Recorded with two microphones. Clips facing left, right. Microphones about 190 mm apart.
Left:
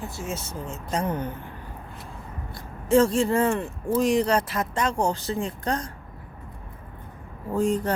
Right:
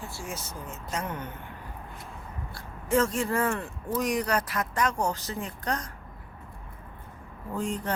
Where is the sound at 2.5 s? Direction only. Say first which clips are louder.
Left 6 dB; 30° left (ahead or behind).